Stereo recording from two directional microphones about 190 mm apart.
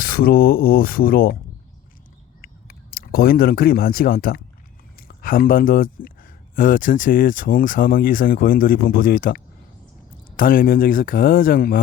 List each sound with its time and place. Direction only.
0.0 s speech: 50° left (ahead or behind)
2.4 s speech: 50° left (ahead or behind)